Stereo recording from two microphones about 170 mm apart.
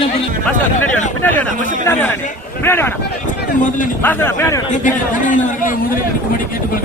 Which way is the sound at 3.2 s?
50° left (ahead or behind).